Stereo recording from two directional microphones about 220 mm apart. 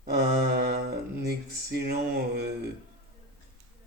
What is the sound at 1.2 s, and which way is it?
Speech, 45° right (ahead or behind).